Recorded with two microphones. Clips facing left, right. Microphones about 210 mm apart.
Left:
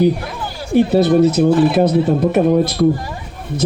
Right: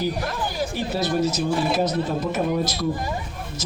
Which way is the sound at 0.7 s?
60° left (ahead or behind).